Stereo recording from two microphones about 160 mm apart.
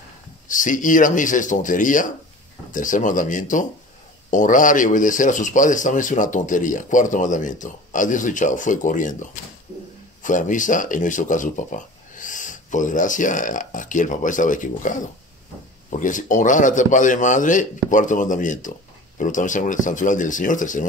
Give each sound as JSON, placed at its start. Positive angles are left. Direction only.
{"t": 0.5, "sound": "speech", "side_deg": 55}